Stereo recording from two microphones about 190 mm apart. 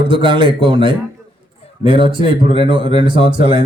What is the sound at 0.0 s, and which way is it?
A man's voice, 25° right (ahead or behind).